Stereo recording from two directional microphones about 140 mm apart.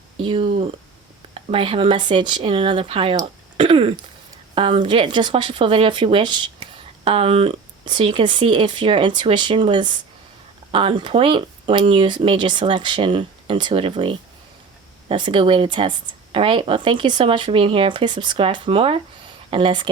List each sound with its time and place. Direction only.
0.2 s speech: 40° right (ahead or behind)